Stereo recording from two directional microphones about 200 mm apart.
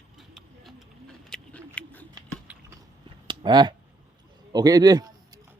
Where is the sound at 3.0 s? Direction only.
25° right (ahead or behind).